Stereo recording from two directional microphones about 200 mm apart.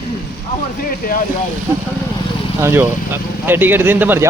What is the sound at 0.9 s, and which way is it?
Speech, 45° left (ahead or behind).